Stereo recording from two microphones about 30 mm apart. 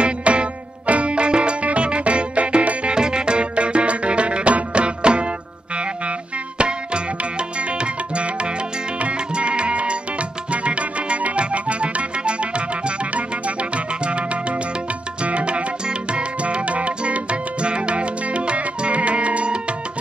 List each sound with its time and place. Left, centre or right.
0.0 s music: right
6.6 s music: right